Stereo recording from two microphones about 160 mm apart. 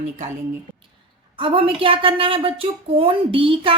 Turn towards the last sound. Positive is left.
turn(degrees=-35)  # may be behind; listen again after turning